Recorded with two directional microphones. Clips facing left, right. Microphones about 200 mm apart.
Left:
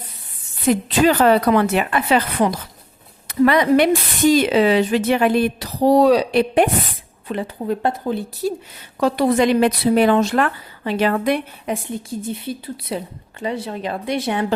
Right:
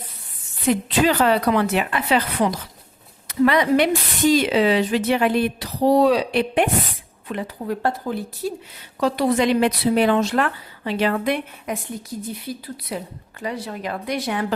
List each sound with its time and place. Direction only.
0.7 s speech: 45° left (ahead or behind)
7.3 s speech: 30° left (ahead or behind)
8.4 s speech: 40° left (ahead or behind)
11.7 s speech: 30° left (ahead or behind)